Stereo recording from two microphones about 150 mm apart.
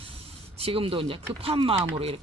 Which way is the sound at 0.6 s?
40° right (ahead or behind).